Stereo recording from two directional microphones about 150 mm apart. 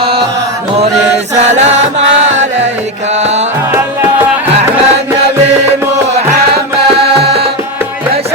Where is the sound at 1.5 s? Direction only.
50° right (ahead or behind).